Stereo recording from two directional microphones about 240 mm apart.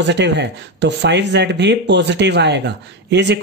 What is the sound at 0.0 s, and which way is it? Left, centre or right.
Speech, right.